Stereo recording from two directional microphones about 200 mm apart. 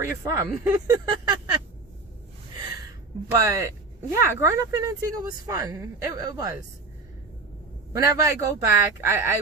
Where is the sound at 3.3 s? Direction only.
15° right (ahead or behind).